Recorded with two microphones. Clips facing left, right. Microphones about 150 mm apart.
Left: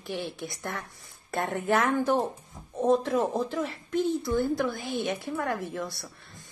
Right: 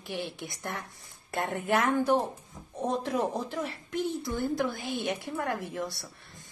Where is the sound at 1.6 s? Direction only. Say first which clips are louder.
Left 1 dB; 45° left (ahead or behind).